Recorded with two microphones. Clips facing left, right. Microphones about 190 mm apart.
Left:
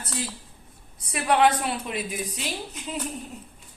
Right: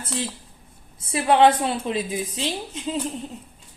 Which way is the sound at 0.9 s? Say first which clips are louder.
Right 4 dB; 25° right (ahead or behind).